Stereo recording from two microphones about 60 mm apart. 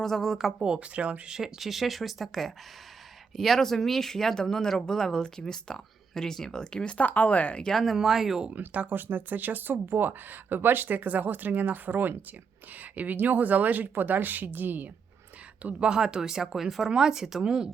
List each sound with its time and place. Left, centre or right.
0.0 s speech: centre
0.6 s speech: centre
1.4 s speech: centre; by 7.7 s left
7.7 s speech: centre
8.5 s speech: right
15.9 s speech: centre